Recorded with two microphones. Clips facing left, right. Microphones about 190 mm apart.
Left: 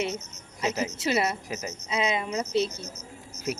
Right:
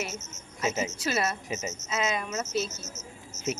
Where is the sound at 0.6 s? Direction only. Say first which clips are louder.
Left 1 dB; centre (ahead or behind).